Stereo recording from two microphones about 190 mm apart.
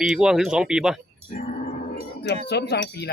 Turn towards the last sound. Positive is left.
turn(degrees=60)  # may be behind; listen again after turning